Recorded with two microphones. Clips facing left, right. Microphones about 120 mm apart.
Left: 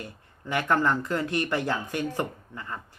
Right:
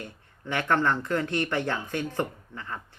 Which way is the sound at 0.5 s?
10° left (ahead or behind).